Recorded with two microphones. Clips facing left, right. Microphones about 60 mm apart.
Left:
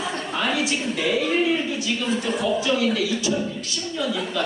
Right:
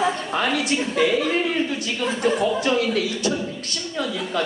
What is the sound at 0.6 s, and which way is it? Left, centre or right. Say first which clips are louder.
A woman's voice: right 3 dB; right.